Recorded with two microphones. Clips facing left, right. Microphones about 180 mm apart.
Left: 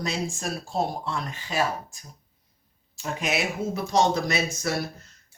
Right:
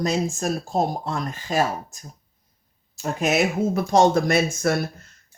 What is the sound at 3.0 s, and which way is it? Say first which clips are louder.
Speech: right 6 dB; 45° right (ahead or behind).